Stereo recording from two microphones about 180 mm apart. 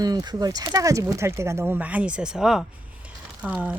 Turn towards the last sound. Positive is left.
turn(degrees=-10)  # may be behind; listen again after turning